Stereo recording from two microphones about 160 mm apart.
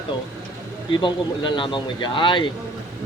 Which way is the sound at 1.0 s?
30° left (ahead or behind).